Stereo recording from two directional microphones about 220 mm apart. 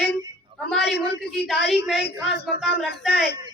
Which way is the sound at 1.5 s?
Centre (ahead or behind).